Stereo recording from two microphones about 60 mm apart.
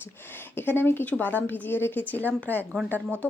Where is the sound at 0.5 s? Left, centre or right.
Left.